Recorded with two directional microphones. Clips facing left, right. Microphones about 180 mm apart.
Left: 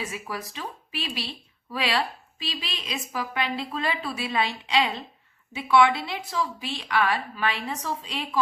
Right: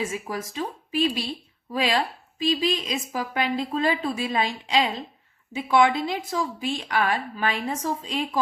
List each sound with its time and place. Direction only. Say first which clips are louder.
0.1 s speech: right 4 dB; 45° right (ahead or behind)